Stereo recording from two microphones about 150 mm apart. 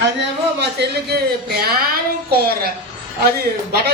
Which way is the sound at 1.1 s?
90° right.